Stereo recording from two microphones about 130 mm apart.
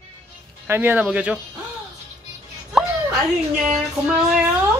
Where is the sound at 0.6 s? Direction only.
15° right (ahead or behind).